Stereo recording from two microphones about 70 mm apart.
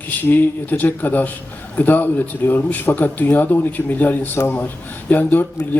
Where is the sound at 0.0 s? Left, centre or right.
Left.